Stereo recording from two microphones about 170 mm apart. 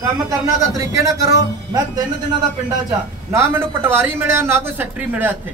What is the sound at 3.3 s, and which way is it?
Speech, 15° right (ahead or behind).